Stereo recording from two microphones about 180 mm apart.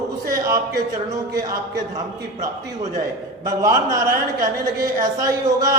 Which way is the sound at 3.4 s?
20° right (ahead or behind).